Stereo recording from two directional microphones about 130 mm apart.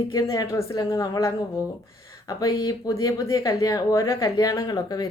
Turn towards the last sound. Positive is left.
turn(degrees=30)  # may be behind; listen again after turning